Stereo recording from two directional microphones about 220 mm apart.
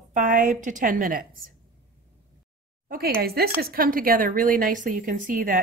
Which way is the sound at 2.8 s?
45° right (ahead or behind).